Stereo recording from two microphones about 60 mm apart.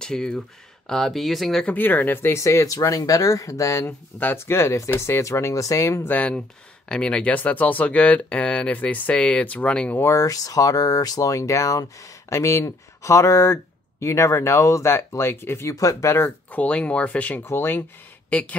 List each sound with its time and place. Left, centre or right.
0.0 s speech: centre
1.7 s speech: left
2.3 s speech: left
6.0 s speech: left
10.1 s speech: left
15.7 s speech: left
16.5 s speech: left
17.4 s speech: left
18.3 s speech: centre